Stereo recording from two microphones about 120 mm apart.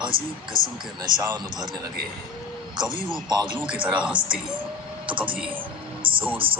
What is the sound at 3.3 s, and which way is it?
Speech, 35° right (ahead or behind).